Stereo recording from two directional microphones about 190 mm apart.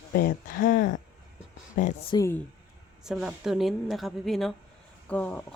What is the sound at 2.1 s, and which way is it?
Speech, 15° left (ahead or behind).